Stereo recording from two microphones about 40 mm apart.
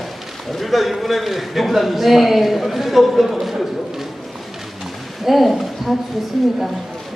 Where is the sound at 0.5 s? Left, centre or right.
Centre.